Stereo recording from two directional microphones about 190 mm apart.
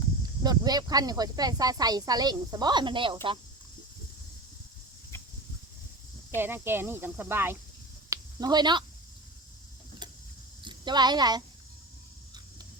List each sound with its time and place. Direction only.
0.4 s speech: 20° right (ahead or behind)
6.3 s speech: 10° right (ahead or behind)
8.1 s a sound: 20° right (ahead or behind)
10.6 s speech: 25° right (ahead or behind)